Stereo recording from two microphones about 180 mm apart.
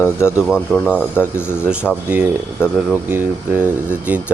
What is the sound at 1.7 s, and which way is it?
Speech, 5° right (ahead or behind).